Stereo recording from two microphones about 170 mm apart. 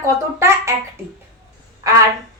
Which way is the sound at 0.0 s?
15° right (ahead or behind).